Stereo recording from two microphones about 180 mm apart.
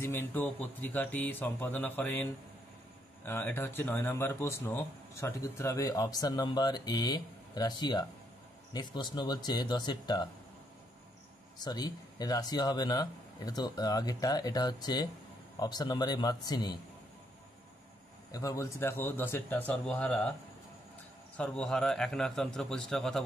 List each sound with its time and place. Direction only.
0.0 s speech: 15° left (ahead or behind)
3.3 s a man's voice: 10° left (ahead or behind)
11.6 s a man's voice: 20° left (ahead or behind)
18.3 s speech: 20° left (ahead or behind)
21.4 s a man's voice: 5° left (ahead or behind)